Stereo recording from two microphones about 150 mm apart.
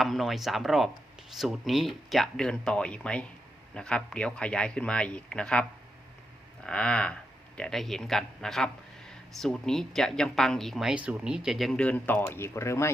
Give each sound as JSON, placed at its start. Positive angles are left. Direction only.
{"t": 0.0, "sound": "speech", "side_deg": 0}